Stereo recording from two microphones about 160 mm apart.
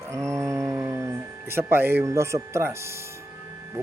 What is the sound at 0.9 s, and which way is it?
A man's voice, 15° right (ahead or behind).